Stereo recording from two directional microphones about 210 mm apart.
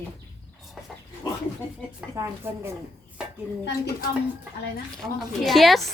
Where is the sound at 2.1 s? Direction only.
15° right (ahead or behind).